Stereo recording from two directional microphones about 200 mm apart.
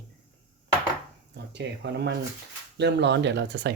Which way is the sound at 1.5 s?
60° right (ahead or behind).